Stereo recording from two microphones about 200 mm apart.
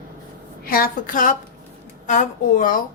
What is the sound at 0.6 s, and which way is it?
A woman's voice, 45° left (ahead or behind).